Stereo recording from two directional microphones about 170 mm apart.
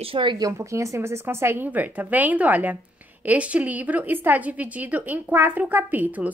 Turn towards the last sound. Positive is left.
turn(degrees=-10)  # may be behind; listen again after turning